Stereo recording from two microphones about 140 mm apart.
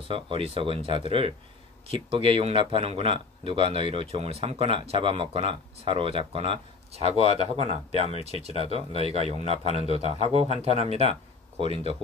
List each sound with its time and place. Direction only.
0.1 s speech: 40° right (ahead or behind)